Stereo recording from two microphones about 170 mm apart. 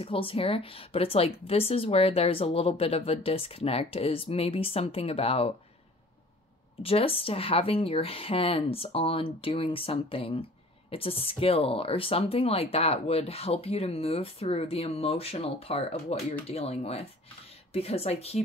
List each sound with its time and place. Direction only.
0.0 s a woman's voice: 30° left (ahead or behind)
6.8 s a woman's voice: 35° left (ahead or behind)